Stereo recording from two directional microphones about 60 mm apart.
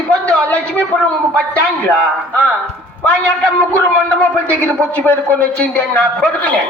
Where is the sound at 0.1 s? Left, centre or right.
Left.